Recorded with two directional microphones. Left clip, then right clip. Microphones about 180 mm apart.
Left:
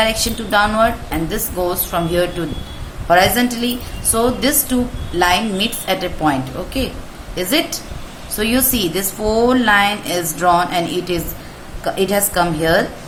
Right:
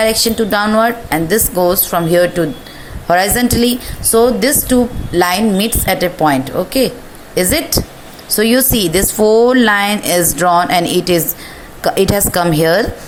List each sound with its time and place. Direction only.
0.0 s a woman's voice: 40° right (ahead or behind)